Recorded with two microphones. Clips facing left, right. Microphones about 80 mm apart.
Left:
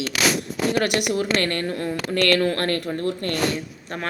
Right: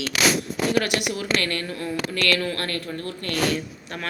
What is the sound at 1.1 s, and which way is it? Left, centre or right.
A woman's voice, left.